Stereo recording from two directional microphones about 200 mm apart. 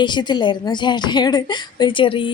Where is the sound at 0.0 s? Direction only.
20° left (ahead or behind).